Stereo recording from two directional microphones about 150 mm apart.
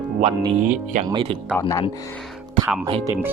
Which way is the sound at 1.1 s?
35° right (ahead or behind).